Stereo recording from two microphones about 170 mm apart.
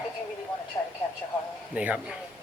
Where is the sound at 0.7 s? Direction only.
20° left (ahead or behind).